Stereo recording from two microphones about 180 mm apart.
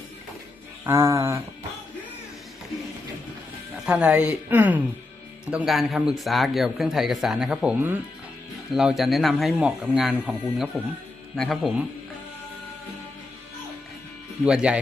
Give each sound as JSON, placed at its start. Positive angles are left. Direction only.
{"t": 0.9, "sound": "speech", "side_deg": -15}
{"t": 3.8, "sound": "speech", "side_deg": -5}
{"t": 14.4, "sound": "speech", "side_deg": -5}